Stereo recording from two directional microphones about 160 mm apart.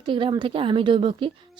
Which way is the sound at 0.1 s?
30° right (ahead or behind).